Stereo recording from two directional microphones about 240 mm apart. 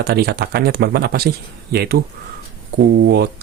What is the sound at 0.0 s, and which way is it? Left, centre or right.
Speech, right.